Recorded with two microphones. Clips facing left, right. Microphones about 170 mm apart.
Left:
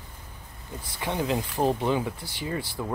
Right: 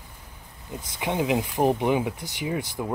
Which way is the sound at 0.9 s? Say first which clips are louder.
Right 3 dB; 15° right (ahead or behind).